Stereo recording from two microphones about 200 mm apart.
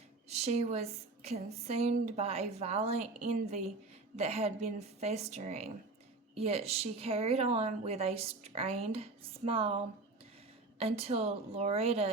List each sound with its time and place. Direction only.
0.3 s a woman's voice: 35° right (ahead or behind)
10.8 s a woman's voice: 30° right (ahead or behind)